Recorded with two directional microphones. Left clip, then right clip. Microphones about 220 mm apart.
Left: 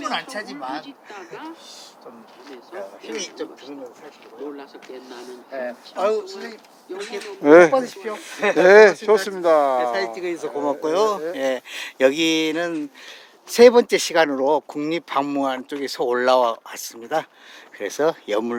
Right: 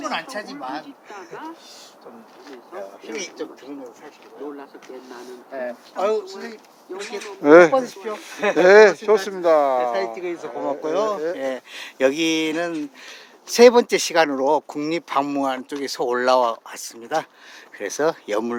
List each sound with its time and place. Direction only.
0.0 s speech: centre (ahead or behind)
2.7 s speech: 5° left (ahead or behind)
6.0 s speech: 5° left (ahead or behind)
7.8 s speech: 15° left (ahead or behind)
8.6 s speech: 5° left (ahead or behind)
10.2 s speech: 45° left (ahead or behind)
11.3 s speech: 45° left (ahead or behind); by 18.5 s 5° left (ahead or behind)